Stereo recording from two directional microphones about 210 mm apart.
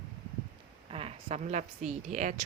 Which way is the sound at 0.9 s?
30° right (ahead or behind).